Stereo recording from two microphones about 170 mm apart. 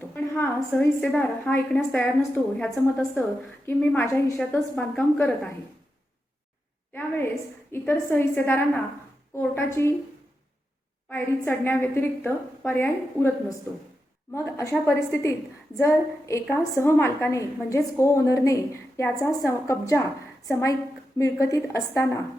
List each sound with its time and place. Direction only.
0.1 s a woman's voice: 10° left (ahead or behind)
3.7 s a woman's voice: 15° left (ahead or behind)
7.7 s a woman's voice: 15° left (ahead or behind)
11.1 s a woman's voice: 15° left (ahead or behind)
14.3 s a woman's voice: 15° left (ahead or behind)